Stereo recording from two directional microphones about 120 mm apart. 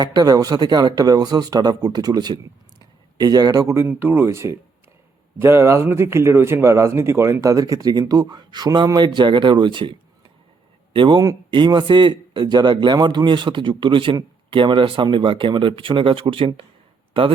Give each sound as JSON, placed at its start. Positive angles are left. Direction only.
{"t": 0.0, "sound": "speech", "side_deg": -35}
{"t": 3.8, "sound": "speech", "side_deg": -15}
{"t": 10.9, "sound": "speech", "side_deg": -40}